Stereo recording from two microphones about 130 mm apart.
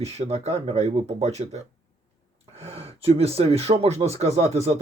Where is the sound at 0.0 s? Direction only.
55° right (ahead or behind).